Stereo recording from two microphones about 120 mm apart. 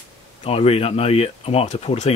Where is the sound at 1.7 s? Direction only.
70° left (ahead or behind).